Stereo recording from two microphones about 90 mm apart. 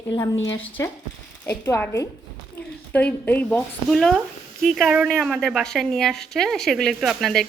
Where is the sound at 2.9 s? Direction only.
15° left (ahead or behind).